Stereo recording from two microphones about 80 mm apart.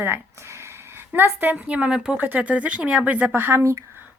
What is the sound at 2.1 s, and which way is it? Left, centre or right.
Speech, right.